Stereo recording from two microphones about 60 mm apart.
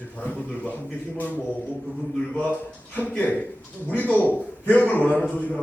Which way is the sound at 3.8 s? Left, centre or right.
Left.